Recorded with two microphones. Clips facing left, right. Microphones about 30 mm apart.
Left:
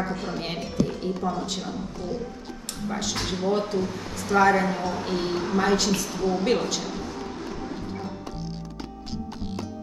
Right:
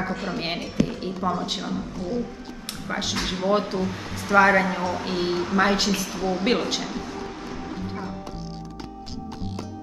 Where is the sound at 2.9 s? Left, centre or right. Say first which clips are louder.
Right 2 dB; right.